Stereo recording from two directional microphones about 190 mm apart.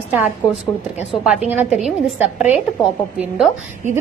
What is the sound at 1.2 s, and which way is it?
A woman's voice, 5° right (ahead or behind).